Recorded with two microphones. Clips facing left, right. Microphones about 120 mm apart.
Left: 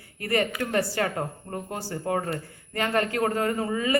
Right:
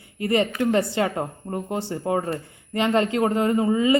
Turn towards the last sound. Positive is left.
turn(degrees=-20)  # may be behind; listen again after turning